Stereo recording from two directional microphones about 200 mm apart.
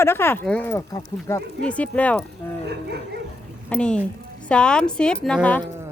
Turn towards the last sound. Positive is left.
turn(degrees=5)  # may be behind; listen again after turning